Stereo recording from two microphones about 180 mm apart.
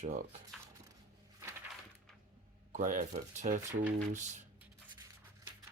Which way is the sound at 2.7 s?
45° right (ahead or behind).